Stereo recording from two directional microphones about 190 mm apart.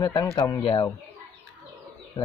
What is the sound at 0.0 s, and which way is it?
Speech, 20° left (ahead or behind).